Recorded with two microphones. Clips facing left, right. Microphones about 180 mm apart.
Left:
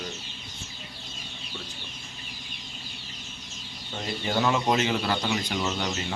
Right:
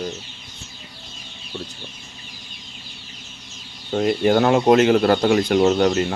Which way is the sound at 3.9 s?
60° right (ahead or behind).